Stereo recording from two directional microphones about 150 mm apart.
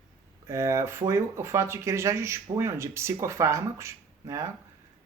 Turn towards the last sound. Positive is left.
turn(degrees=-20)  # may be behind; listen again after turning